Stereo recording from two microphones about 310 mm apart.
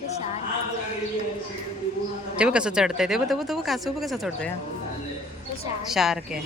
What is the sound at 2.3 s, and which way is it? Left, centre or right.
Speech, centre.